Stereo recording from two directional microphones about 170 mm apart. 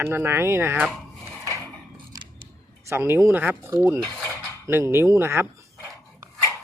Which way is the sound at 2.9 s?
15° right (ahead or behind).